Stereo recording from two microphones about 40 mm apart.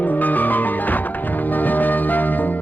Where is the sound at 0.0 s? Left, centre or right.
Left.